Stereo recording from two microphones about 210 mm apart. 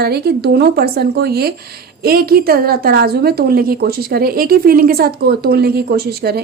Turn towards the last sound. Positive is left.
turn(degrees=-50)  # may be behind; listen again after turning